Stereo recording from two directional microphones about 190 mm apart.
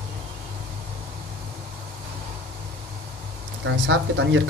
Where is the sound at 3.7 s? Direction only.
75° right (ahead or behind).